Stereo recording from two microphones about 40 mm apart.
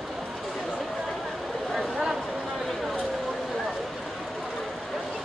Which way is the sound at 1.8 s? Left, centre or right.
Centre.